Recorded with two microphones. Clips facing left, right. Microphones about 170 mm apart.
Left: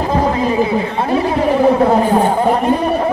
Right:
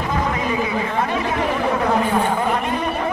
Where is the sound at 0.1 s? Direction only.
35° left (ahead or behind).